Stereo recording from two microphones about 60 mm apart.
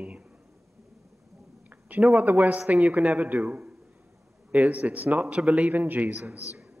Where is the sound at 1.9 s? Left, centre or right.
Right.